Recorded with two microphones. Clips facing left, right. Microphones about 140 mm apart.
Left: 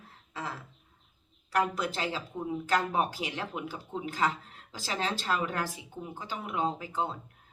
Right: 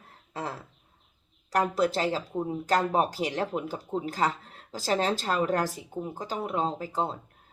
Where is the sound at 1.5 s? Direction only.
40° right (ahead or behind).